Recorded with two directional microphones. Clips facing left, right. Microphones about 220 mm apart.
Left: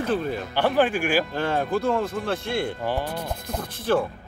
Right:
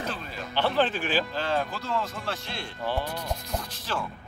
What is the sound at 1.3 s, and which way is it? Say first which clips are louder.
Speech: left 5 dB; 55° left (ahead or behind).